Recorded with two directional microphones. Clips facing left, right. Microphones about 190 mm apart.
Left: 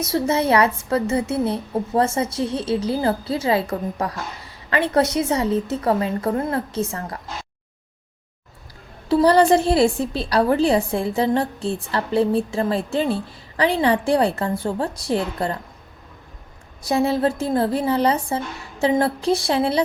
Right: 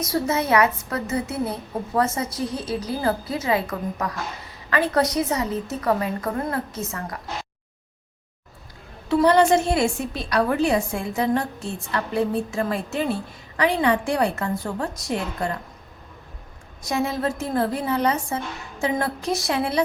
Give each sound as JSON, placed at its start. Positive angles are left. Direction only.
{"t": 0.0, "sound": "a woman's voice", "side_deg": 30}
{"t": 9.0, "sound": "a woman's voice", "side_deg": 35}
{"t": 16.8, "sound": "a woman's voice", "side_deg": 30}